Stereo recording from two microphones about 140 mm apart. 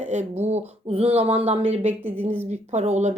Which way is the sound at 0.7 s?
45° right (ahead or behind).